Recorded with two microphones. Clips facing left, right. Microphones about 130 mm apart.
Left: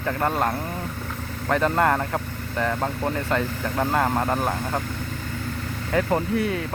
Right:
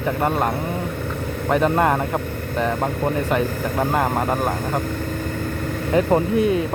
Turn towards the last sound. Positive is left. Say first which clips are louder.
# right 6 dB
turn(degrees=-20)  # may be behind; listen again after turning